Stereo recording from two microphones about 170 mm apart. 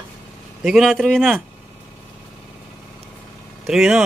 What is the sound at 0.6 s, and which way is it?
Speech, centre (ahead or behind).